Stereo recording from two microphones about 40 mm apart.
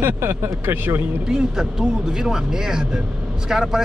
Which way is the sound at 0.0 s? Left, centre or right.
Right.